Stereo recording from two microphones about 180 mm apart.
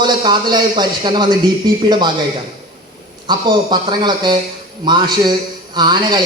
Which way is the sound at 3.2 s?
25° right (ahead or behind).